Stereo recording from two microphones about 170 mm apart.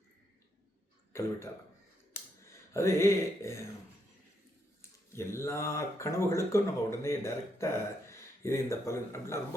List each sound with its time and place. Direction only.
1.1 s speech: 15° left (ahead or behind)
2.1 s a sound: 15° left (ahead or behind)
4.8 s speech: 15° left (ahead or behind)